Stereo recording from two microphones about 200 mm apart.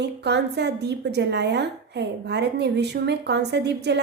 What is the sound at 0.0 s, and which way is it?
A woman's voice, 55° right (ahead or behind).